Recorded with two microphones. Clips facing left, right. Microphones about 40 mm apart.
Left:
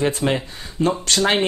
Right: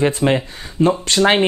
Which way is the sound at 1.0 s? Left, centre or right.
Right.